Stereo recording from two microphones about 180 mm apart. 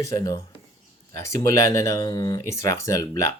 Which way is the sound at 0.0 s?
20° left (ahead or behind).